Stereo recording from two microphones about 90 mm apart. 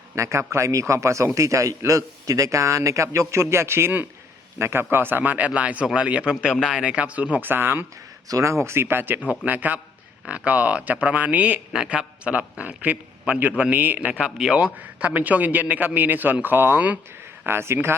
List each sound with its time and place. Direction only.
0.2 s a man's voice: 30° right (ahead or behind)
8.3 s a man's voice: 35° right (ahead or behind)